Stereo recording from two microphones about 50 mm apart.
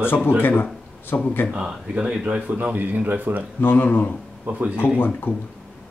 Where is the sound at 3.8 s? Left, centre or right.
Left.